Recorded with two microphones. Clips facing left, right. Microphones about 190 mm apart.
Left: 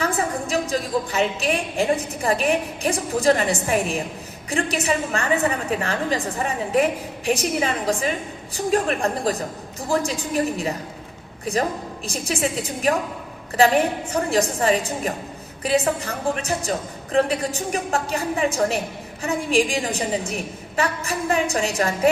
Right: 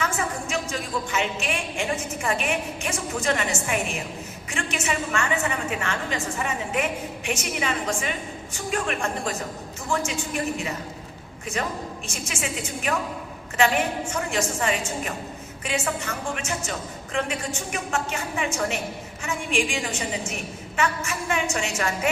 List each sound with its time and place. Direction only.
0.0 s a woman's voice: 35° left (ahead or behind)